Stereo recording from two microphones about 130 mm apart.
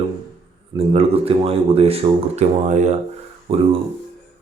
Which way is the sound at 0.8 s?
50° right (ahead or behind).